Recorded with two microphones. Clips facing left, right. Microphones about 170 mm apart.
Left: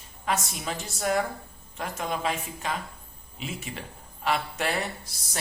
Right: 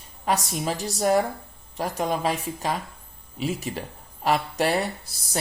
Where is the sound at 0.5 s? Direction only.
35° right (ahead or behind).